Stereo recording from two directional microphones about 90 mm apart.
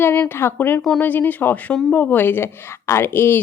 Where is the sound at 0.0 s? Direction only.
25° left (ahead or behind).